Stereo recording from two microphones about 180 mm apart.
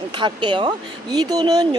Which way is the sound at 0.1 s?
25° right (ahead or behind).